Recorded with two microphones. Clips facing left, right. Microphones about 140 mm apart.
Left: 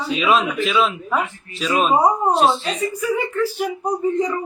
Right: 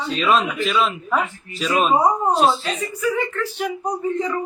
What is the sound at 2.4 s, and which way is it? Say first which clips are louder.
Speech: left 1 dB; centre (ahead or behind).